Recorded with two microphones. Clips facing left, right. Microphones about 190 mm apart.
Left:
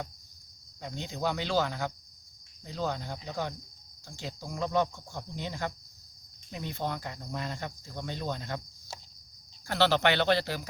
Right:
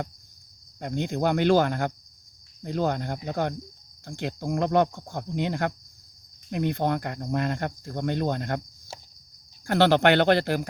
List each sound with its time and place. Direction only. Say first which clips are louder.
0.8 s cricket: right 8 dB; 60° right (ahead or behind)
9.6 s speech: right 6 dB; 55° right (ahead or behind)